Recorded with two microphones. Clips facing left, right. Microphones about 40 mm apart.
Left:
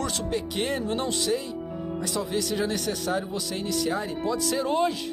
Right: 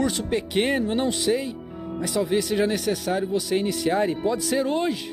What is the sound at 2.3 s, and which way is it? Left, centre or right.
Speech, centre.